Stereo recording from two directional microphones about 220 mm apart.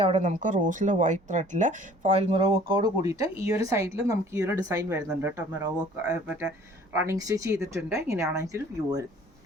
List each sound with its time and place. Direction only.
0.0 s speech: 30° right (ahead or behind); by 9.0 s 15° right (ahead or behind)